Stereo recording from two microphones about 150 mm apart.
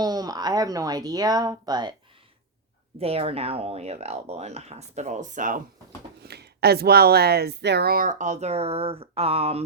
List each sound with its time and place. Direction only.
0.0 s speech: 25° right (ahead or behind)
3.0 s speech: 40° right (ahead or behind); by 5.6 s 60° right (ahead or behind)
6.2 s speech: 90° right; by 9.6 s 40° right (ahead or behind)